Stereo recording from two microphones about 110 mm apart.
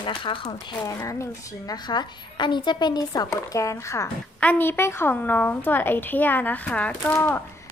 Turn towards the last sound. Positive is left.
turn(degrees=20)  # may be behind; listen again after turning